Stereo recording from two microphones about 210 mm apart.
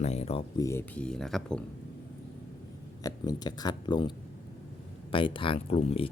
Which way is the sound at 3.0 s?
20° left (ahead or behind).